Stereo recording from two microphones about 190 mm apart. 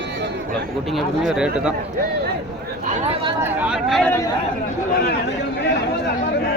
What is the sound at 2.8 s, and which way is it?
Speech, 40° right (ahead or behind).